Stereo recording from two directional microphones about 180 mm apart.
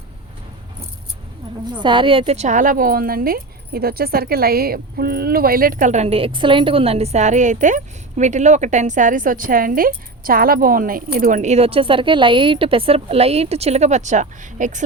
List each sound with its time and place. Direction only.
1.7 s speech: 25° right (ahead or behind); by 14.8 s 45° right (ahead or behind)